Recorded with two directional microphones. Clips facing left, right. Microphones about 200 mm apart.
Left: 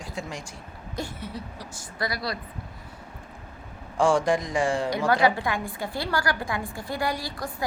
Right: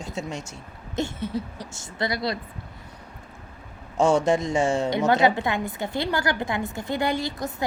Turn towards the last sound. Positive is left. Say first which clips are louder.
# right 4 dB
turn(degrees=-25)  # may be behind; listen again after turning